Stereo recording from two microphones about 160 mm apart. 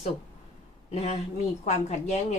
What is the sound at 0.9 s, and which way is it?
A woman's voice, 40° left (ahead or behind).